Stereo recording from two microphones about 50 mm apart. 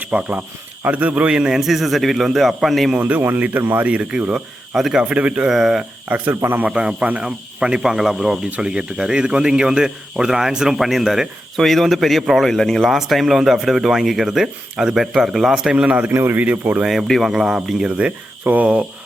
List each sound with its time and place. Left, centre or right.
0.0 s speech: right
1.3 s a man's voice: centre
3.0 s speech: right
4.1 s speech: centre
4.9 s speech: right
5.5 s a man's voice: centre
6.1 s speech: right
6.7 s a man's voice: right
11.5 s a man's voice: centre
15.7 s speech: right
16.1 s speech: right
16.4 s speech: right
16.8 s a man's voice: centre
17.8 s speech: right